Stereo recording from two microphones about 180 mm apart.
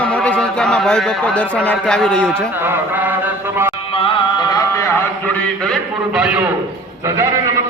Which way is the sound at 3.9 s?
30° left (ahead or behind).